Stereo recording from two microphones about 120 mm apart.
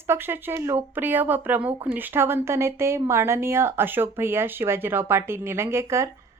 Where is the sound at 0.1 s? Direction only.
20° right (ahead or behind).